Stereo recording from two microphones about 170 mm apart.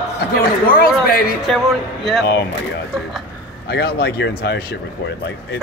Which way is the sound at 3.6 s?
70° left (ahead or behind).